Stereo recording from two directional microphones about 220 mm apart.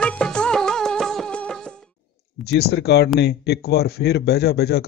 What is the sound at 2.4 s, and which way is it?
Speech, 50° left (ahead or behind).